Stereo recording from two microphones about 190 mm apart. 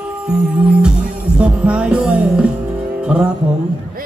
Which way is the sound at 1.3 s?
5° right (ahead or behind).